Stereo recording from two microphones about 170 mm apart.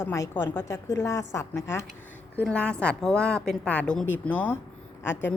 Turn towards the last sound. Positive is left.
turn(degrees=15)  # may be behind; listen again after turning